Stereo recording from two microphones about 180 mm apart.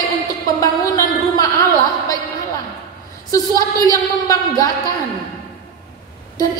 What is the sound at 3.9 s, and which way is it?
A woman's voice, 20° left (ahead or behind).